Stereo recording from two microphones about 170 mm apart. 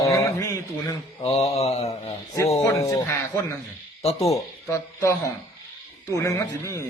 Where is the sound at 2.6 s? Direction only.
20° left (ahead or behind).